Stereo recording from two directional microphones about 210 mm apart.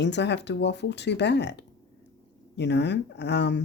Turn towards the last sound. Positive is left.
turn(degrees=55)  # may be behind; listen again after turning